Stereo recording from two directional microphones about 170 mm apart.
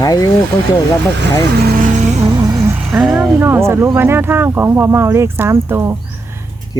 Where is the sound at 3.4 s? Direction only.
15° right (ahead or behind).